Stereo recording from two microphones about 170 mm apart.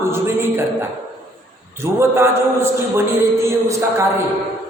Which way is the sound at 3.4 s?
15° right (ahead or behind).